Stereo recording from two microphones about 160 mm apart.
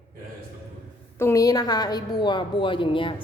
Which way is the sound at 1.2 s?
20° left (ahead or behind).